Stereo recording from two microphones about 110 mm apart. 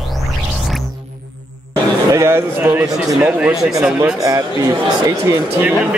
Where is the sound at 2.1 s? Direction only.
25° right (ahead or behind).